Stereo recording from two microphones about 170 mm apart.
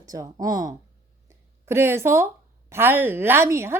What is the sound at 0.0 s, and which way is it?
A woman's voice, 20° right (ahead or behind).